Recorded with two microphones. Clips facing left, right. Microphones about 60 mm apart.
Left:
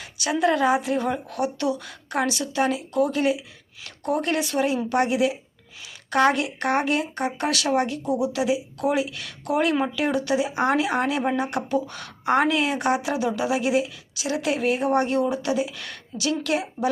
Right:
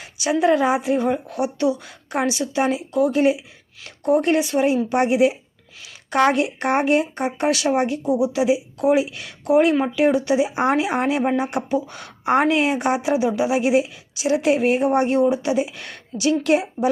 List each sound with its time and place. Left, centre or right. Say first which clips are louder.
0.0 s speech: right 3 dB; centre
8.0 s speech: right 4 dB; centre; by 16.9 s right